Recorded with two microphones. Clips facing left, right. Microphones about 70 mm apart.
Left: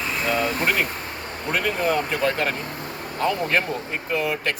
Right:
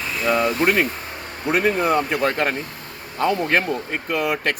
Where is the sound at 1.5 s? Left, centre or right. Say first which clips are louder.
Right 4 dB; right.